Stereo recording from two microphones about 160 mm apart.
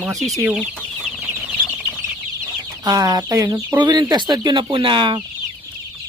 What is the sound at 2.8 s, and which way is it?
Speech, 20° right (ahead or behind).